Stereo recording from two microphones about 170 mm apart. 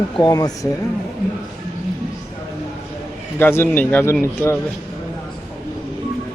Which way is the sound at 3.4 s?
15° left (ahead or behind).